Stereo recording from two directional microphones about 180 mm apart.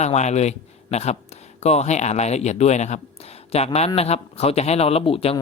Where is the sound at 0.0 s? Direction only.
40° left (ahead or behind).